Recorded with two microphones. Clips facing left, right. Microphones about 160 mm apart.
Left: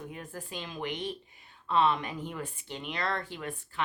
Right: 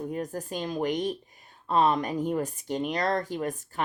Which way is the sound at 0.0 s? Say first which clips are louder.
Right 9 dB; 40° right (ahead or behind).